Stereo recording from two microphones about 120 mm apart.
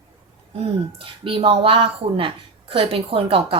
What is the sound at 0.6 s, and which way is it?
Speech, 50° right (ahead or behind).